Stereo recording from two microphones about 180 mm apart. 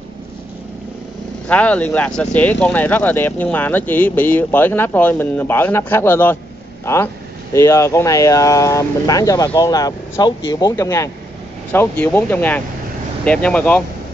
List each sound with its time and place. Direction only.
1.5 s speech: 10° left (ahead or behind)
7.5 s speech: 15° left (ahead or behind)